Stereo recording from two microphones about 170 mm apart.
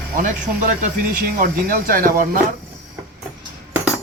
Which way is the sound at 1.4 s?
55° right (ahead or behind).